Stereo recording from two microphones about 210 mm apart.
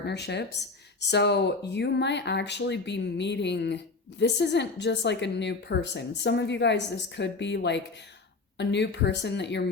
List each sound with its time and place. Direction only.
0.0 s a woman's voice: 55° left (ahead or behind)